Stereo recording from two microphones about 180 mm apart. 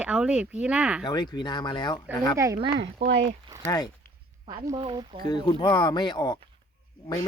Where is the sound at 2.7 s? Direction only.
80° right.